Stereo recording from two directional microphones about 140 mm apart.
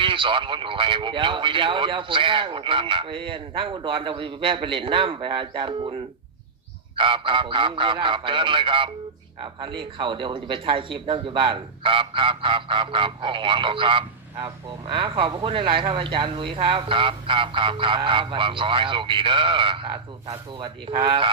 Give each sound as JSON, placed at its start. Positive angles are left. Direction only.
{"t": 0.0, "sound": "speech", "side_deg": -35}